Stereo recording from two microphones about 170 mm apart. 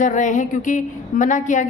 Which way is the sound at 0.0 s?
45° left (ahead or behind).